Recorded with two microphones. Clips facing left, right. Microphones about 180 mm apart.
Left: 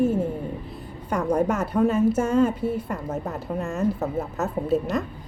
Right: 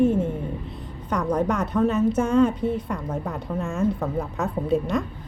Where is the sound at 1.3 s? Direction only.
10° left (ahead or behind).